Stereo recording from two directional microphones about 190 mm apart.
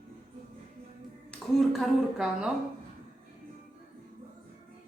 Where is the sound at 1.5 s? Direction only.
Centre (ahead or behind).